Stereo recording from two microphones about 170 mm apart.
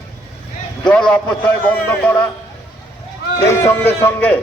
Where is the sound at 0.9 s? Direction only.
5° left (ahead or behind).